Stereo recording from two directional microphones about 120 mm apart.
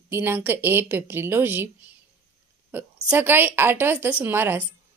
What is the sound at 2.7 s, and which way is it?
A woman's voice, 15° right (ahead or behind).